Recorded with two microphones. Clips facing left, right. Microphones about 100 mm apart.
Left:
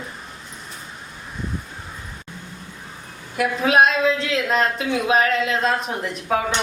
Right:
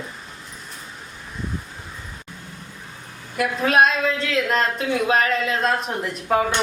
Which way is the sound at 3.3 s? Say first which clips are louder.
Left 1 dB; centre (ahead or behind).